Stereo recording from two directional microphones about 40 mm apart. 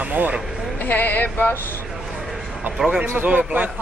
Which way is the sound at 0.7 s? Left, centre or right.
Left.